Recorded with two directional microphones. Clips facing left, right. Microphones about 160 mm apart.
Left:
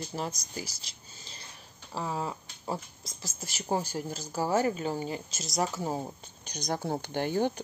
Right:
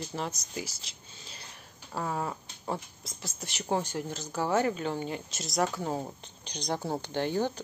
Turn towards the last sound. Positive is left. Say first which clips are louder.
# left 2 dB
turn(degrees=15)  # may be behind; listen again after turning